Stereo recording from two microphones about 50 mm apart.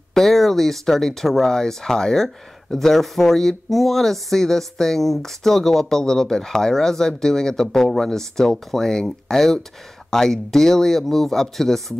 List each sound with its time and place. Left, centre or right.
0.1 s speech: centre